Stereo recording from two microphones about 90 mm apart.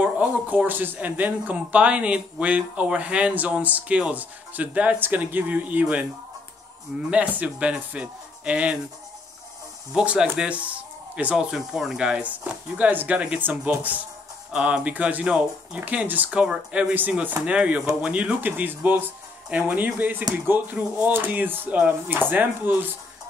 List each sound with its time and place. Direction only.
0.0 s speech: 20° right (ahead or behind)
7.1 s speech: 15° right (ahead or behind)
9.9 s speech: 10° right (ahead or behind)
11.5 s speech: 5° right (ahead or behind); by 22.8 s 20° right (ahead or behind)